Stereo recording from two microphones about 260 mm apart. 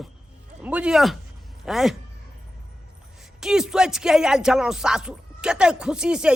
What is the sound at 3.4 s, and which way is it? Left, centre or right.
Speech, centre.